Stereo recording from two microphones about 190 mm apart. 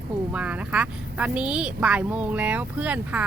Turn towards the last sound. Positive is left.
turn(degrees=-5)  # may be behind; listen again after turning